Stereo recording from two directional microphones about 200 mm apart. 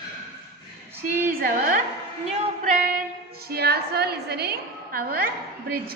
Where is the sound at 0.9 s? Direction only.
10° right (ahead or behind).